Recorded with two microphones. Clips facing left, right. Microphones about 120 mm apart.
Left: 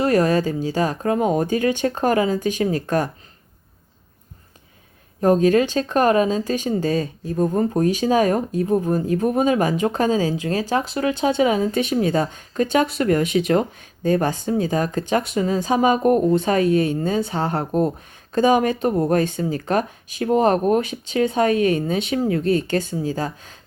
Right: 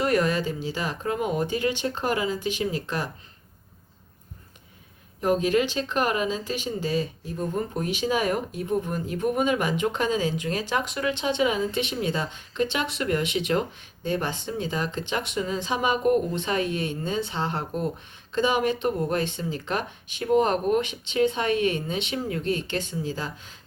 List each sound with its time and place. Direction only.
0.0 s speech: 35° left (ahead or behind)
5.5 s speech: 45° left (ahead or behind)